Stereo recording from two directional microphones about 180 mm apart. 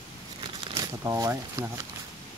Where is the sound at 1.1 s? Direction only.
20° right (ahead or behind).